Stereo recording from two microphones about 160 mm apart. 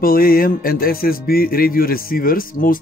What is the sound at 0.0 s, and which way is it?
Music, 65° left (ahead or behind).